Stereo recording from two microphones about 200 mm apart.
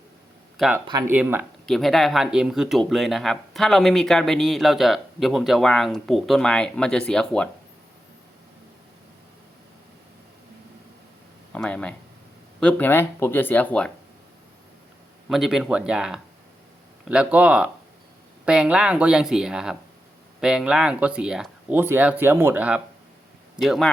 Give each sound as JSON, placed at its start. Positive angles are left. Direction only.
{"t": 0.5, "sound": "speech", "side_deg": 0}
{"t": 0.9, "sound": "speech", "side_deg": -20}
{"t": 1.1, "sound": "speech", "side_deg": -10}
{"t": 11.5, "sound": "speech", "side_deg": 5}
{"t": 15.3, "sound": "speech", "side_deg": 0}